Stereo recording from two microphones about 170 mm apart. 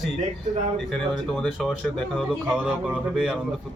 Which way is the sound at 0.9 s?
5° left (ahead or behind).